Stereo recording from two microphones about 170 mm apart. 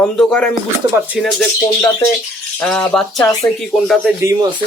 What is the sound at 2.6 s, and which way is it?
Speech, 5° left (ahead or behind).